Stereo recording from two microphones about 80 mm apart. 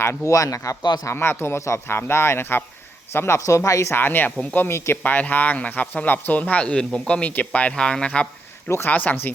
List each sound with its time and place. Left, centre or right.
0.0 s speech: left
0.8 s speech: left
1.0 s speech: left
3.9 s speech: left